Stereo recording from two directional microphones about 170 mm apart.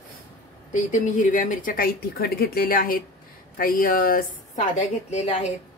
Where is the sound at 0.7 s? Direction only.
45° left (ahead or behind).